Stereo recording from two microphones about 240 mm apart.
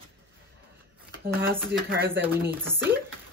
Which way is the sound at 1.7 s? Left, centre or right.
Right.